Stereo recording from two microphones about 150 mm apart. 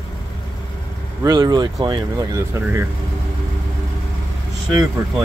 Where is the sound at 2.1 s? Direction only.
20° right (ahead or behind).